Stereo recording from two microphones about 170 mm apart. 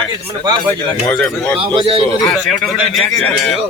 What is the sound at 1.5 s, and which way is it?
Speech, 30° right (ahead or behind).